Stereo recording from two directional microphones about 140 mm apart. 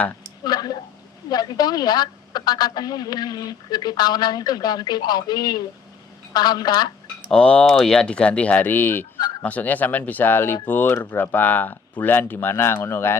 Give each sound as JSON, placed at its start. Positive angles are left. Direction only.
{"t": 0.4, "sound": "a sound", "side_deg": 30}
{"t": 1.3, "sound": "a woman's voice", "side_deg": 30}
{"t": 7.3, "sound": "speech", "side_deg": 10}